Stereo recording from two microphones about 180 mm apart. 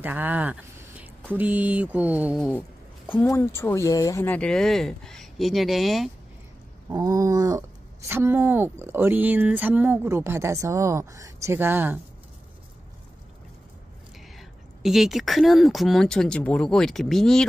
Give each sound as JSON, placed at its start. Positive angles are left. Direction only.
{"t": 0.0, "sound": "speech", "side_deg": -10}
{"t": 3.1, "sound": "speech", "side_deg": 10}
{"t": 6.9, "sound": "a sound", "side_deg": -20}
{"t": 8.1, "sound": "speech", "side_deg": -10}
{"t": 14.3, "sound": "speech", "side_deg": 0}